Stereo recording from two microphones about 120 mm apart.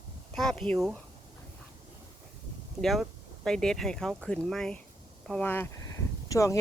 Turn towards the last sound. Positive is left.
turn(degrees=25)  # may be behind; listen again after turning